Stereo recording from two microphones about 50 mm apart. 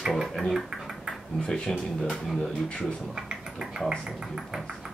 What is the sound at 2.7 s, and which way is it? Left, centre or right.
Speech, left.